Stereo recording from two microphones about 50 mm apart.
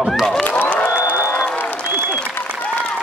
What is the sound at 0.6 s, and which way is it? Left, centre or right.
Applause, left.